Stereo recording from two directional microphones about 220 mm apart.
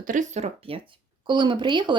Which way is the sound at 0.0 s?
35° right (ahead or behind).